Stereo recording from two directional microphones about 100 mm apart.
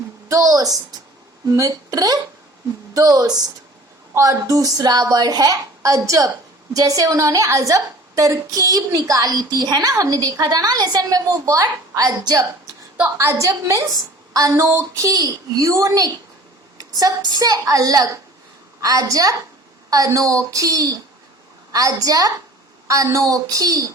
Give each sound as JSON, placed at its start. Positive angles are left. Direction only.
{"t": 0.3, "sound": "a woman's voice", "side_deg": -35}
{"t": 13.0, "sound": "a woman's voice", "side_deg": -25}